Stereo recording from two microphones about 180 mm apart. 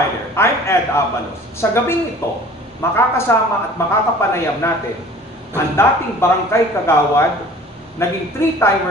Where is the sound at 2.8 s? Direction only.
15° left (ahead or behind).